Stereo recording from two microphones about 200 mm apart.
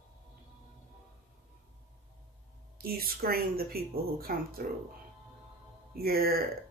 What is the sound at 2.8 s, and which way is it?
Speech, 50° right (ahead or behind).